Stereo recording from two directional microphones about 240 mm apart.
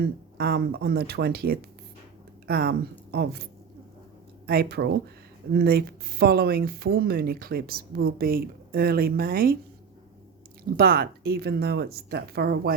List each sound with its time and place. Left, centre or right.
0.0 s speech: right
4.4 s speech: right
10.6 s speech: right